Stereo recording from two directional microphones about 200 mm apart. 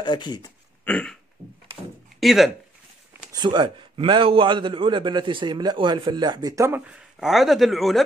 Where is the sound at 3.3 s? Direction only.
20° right (ahead or behind).